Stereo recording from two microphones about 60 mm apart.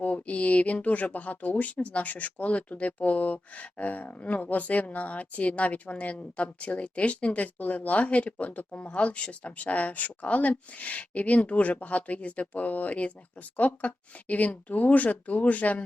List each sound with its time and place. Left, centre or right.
0.0 s speech: left